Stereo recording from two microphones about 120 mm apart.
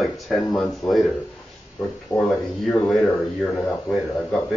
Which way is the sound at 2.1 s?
10° left (ahead or behind).